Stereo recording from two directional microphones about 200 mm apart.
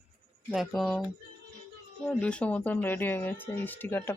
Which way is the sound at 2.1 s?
5° left (ahead or behind).